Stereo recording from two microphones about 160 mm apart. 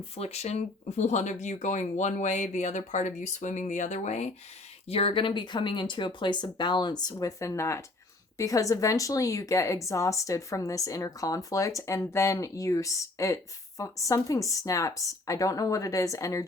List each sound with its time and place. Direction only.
0.2 s a woman's voice: 40° left (ahead or behind); by 16.5 s 20° left (ahead or behind)